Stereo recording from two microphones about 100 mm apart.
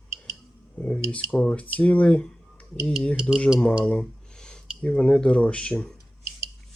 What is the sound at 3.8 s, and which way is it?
Speech, 10° left (ahead or behind).